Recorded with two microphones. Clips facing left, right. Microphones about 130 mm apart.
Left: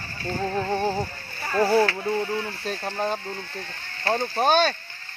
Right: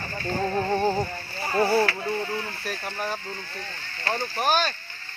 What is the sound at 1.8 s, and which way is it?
Music, 15° left (ahead or behind).